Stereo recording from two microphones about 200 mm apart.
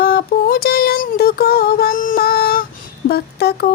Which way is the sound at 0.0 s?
50° left (ahead or behind).